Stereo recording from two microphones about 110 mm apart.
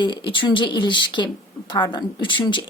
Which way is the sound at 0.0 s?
50° left (ahead or behind).